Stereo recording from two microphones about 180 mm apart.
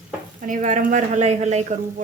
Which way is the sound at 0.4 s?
45° right (ahead or behind).